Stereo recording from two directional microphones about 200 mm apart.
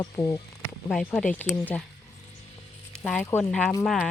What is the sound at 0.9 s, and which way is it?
Speech, centre (ahead or behind).